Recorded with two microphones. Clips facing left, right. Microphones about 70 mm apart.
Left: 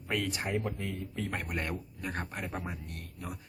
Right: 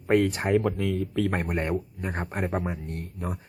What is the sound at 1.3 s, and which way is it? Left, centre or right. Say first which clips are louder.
Speech: right 8 dB; right.